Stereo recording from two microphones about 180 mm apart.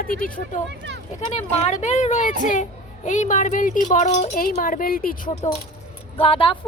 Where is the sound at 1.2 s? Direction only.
40° left (ahead or behind).